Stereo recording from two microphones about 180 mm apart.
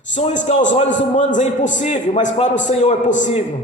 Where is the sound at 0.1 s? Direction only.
40° left (ahead or behind).